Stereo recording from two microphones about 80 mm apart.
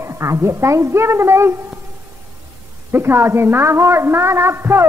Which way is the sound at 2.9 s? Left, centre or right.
Right.